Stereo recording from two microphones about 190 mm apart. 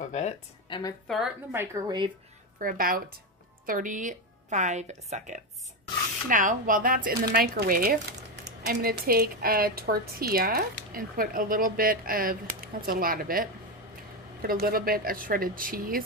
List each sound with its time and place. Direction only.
0.1 s speech: 35° left (ahead or behind)
1.0 s a woman's voice: centre (ahead or behind)
1.5 s speech: 15° right (ahead or behind)
2.6 s a woman's voice: 50° right (ahead or behind)